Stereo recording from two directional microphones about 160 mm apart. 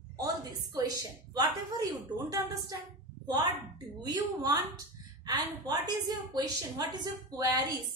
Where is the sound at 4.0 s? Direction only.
25° right (ahead or behind).